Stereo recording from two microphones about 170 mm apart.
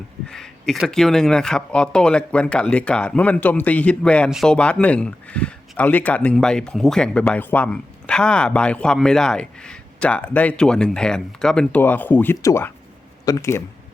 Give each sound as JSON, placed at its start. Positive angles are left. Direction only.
{"t": 0.3, "sound": "speech", "side_deg": 5}